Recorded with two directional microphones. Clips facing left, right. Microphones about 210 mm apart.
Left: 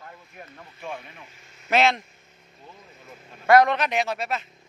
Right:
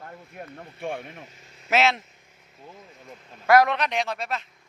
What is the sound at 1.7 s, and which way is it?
Speech, 5° right (ahead or behind).